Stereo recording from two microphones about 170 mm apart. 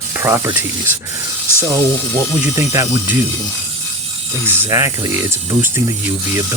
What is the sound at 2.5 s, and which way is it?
Speech, 20° right (ahead or behind).